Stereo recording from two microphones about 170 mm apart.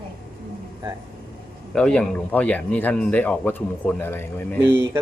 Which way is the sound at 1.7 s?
5° left (ahead or behind).